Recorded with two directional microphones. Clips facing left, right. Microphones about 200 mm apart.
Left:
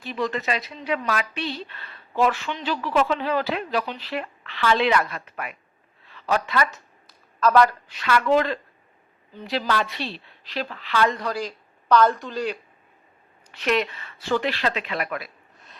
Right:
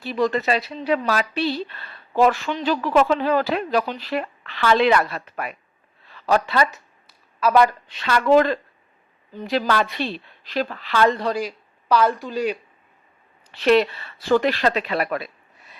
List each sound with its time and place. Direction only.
0.0 s a woman's voice: 40° right (ahead or behind)
7.1 s a sound: 10° right (ahead or behind)
8.0 s a woman's voice: 40° right (ahead or behind)
11.3 s speech: 10° right (ahead or behind)
13.6 s a woman's voice: 35° right (ahead or behind)